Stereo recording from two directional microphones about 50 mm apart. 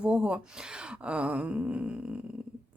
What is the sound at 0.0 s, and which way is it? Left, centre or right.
Speech, right.